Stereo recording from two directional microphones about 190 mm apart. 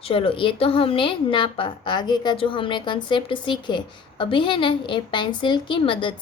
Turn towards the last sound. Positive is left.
turn(degrees=25)  # may be behind; listen again after turning